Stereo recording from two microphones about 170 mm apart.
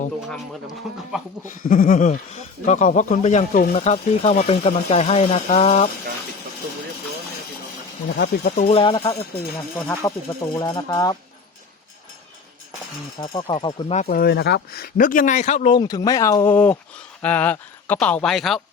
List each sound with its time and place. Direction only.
1.5 s speech: 50° left (ahead or behind)
8.1 s speech: 60° left (ahead or behind)
8.6 s speech: 30° left (ahead or behind)
9.8 s speech: 15° left (ahead or behind)
13.1 s speech: 25° left (ahead or behind)
14.1 s speech: 65° left (ahead or behind); by 15.7 s 40° left (ahead or behind)
15.7 s speech: 25° left (ahead or behind); by 18.6 s centre (ahead or behind)